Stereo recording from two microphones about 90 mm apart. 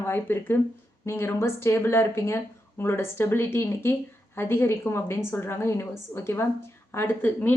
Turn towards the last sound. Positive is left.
turn(degrees=20)  # may be behind; listen again after turning